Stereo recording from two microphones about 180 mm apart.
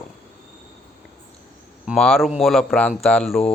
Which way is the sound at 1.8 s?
Centre (ahead or behind).